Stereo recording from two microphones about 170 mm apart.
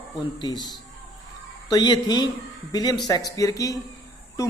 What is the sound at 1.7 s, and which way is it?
Speech, 25° left (ahead or behind).